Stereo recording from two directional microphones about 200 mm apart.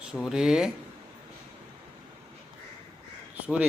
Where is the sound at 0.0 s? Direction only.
5° right (ahead or behind).